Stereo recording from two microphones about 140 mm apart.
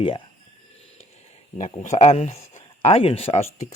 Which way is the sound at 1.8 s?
55° left (ahead or behind).